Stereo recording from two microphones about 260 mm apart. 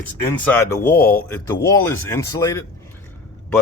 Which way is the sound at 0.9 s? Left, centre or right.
Left.